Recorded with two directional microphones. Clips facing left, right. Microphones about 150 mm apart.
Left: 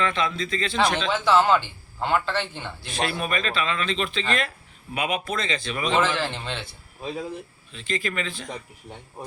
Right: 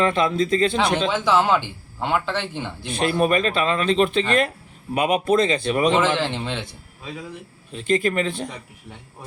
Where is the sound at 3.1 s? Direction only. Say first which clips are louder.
Right 11 dB; 45° right (ahead or behind).